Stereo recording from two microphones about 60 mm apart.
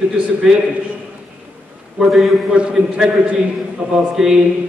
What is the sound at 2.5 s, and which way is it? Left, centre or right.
A man's voice, centre.